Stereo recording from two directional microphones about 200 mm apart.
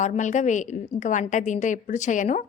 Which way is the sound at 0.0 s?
35° left (ahead or behind).